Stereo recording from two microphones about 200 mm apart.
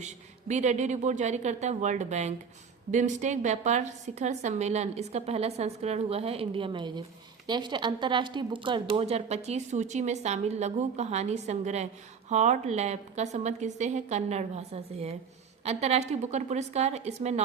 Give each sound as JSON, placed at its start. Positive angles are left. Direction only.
{"t": 0.0, "sound": "speech", "side_deg": -35}